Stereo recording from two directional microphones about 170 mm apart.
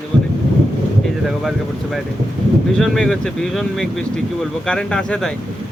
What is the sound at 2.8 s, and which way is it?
Speech, 5° left (ahead or behind).